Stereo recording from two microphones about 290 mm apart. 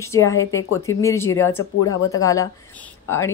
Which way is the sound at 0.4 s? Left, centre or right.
Left.